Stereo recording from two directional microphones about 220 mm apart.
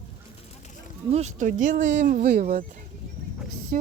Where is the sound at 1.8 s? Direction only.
50° right (ahead or behind).